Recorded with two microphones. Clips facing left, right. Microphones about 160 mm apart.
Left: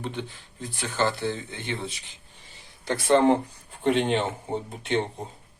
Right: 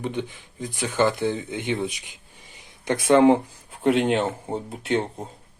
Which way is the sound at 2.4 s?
20° right (ahead or behind).